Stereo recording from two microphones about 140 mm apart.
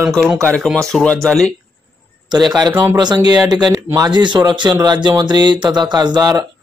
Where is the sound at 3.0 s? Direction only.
30° right (ahead or behind).